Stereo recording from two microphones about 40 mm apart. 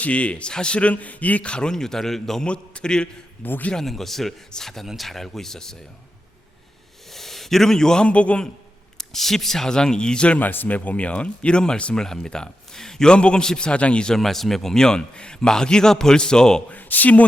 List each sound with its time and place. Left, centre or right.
0.0 s speech: left
1.5 s a man's voice: left
1.7 s a man's voice: centre
2.5 s a man's voice: left
3.4 s speech: left
3.8 s a man's voice: centre
7.1 s a sound: centre
8.0 s speech: left
9.0 s a man's voice: centre; by 10.3 s left
10.3 s speech: left
10.7 s a man's voice: left
14.2 s a man's voice: centre
16.6 s speech: left